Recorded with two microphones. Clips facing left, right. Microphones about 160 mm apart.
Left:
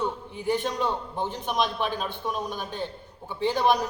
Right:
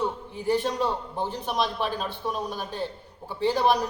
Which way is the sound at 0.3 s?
35° right (ahead or behind).